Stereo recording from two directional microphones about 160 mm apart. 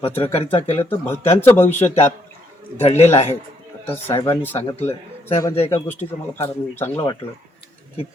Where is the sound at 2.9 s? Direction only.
45° left (ahead or behind).